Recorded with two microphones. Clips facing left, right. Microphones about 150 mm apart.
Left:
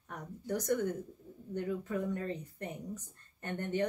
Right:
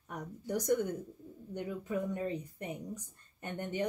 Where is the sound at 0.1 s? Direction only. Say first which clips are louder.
Right 1 dB; 15° right (ahead or behind).